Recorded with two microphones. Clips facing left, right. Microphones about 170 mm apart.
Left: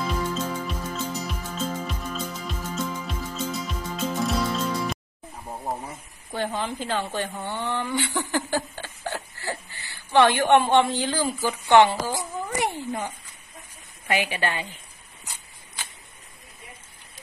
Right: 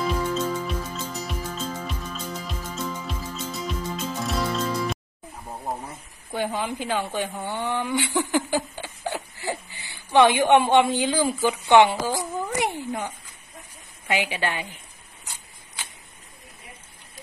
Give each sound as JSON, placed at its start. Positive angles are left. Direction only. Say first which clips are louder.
{"t": 0.0, "sound": "music", "louder": "right 3 dB", "side_deg": 0}
{"t": 5.4, "sound": "a sound", "louder": "left 1 dB", "side_deg": 5}
{"t": 6.3, "sound": "a woman's voice", "louder": "right 1 dB", "side_deg": -10}
{"t": 14.0, "sound": "a woman's voice", "louder": "even", "side_deg": -15}